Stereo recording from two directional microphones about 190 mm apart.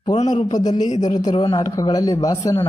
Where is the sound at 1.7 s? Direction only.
20° left (ahead or behind).